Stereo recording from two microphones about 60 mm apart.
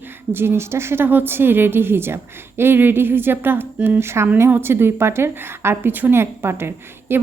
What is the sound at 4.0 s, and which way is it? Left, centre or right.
Speech, right.